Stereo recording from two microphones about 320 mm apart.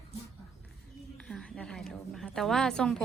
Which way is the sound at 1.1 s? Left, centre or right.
Centre.